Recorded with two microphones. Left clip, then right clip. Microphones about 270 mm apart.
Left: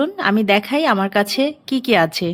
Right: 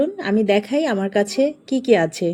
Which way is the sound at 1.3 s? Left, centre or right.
Left.